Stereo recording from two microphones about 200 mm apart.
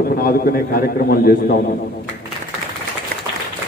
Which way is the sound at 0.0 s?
50° left (ahead or behind).